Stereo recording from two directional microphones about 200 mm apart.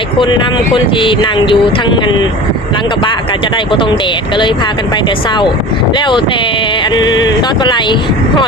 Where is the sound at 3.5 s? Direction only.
25° left (ahead or behind).